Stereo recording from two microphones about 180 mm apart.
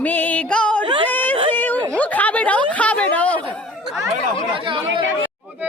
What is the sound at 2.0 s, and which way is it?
Speech, 10° left (ahead or behind).